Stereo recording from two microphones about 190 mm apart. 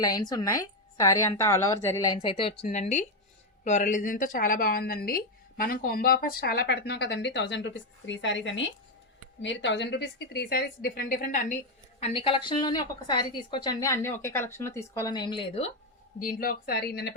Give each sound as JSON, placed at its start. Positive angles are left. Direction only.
{"t": 0.0, "sound": "a woman's voice", "side_deg": 20}
{"t": 11.9, "sound": "a woman's voice", "side_deg": 30}
{"t": 16.1, "sound": "a woman's voice", "side_deg": 50}